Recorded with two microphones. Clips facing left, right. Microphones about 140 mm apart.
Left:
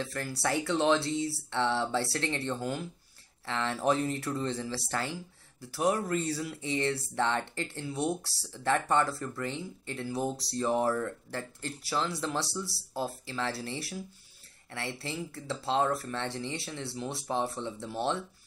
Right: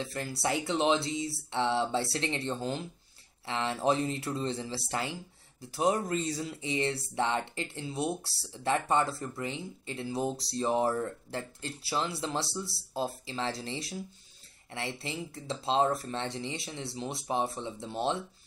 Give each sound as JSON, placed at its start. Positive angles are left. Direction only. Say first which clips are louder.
{"t": 0.0, "sound": "speech", "louder": "even", "side_deg": -20}